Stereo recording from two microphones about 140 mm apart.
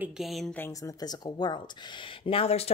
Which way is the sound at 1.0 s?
30° left (ahead or behind).